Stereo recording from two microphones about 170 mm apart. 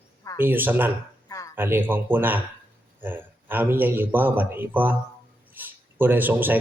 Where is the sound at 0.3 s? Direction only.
10° right (ahead or behind).